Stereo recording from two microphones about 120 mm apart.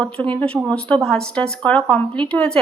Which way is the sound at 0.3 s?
10° left (ahead or behind).